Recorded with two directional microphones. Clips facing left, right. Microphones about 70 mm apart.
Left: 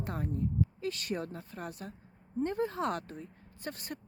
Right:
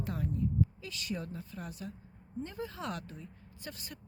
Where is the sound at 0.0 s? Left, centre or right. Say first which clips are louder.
Even; left.